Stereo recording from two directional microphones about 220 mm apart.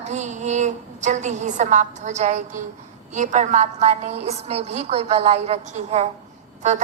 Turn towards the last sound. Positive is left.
turn(degrees=-35)  # may be behind; listen again after turning